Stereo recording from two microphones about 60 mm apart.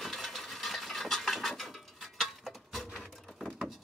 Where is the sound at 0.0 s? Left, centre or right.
Centre.